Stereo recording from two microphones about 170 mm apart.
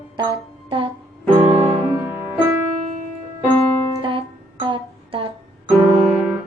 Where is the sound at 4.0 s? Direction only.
30° right (ahead or behind).